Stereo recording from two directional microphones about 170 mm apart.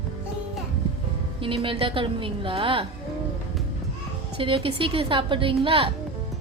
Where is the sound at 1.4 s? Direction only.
30° right (ahead or behind).